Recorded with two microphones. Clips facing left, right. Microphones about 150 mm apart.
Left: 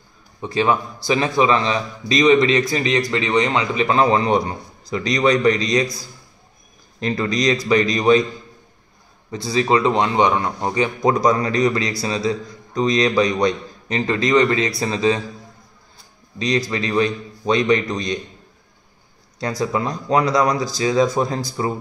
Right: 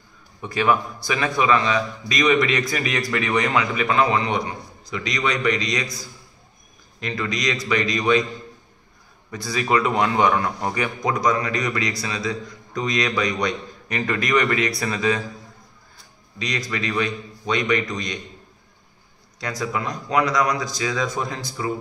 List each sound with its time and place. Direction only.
0.4 s a man's voice: 25° left (ahead or behind)
7.0 s a man's voice: 35° left (ahead or behind)
9.3 s a man's voice: 25° left (ahead or behind)
16.3 s a man's voice: 30° left (ahead or behind)
19.4 s a man's voice: 30° left (ahead or behind)